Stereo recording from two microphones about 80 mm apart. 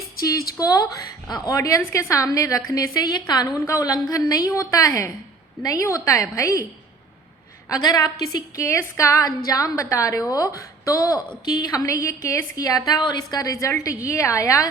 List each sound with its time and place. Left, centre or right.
0.6 s a woman's voice: left
7.7 s a woman's voice: left
9.2 s a woman's voice: left
13.4 s a woman's voice: left